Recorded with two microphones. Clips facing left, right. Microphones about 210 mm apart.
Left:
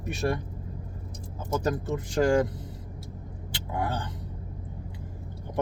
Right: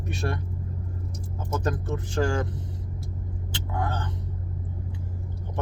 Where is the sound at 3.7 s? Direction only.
10° left (ahead or behind).